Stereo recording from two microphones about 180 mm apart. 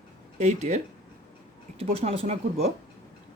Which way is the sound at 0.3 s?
40° right (ahead or behind).